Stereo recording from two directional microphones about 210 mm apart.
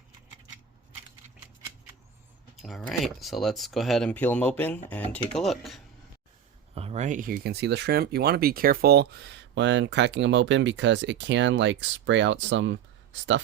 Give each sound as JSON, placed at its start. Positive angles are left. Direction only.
{"t": 2.6, "sound": "speech", "side_deg": 0}
{"t": 6.7, "sound": "speech", "side_deg": -30}